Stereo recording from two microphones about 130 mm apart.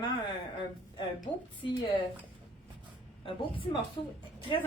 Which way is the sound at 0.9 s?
35° left (ahead or behind).